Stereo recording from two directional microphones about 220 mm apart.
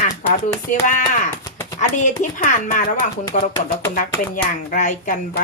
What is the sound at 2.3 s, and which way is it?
Speech, 35° left (ahead or behind).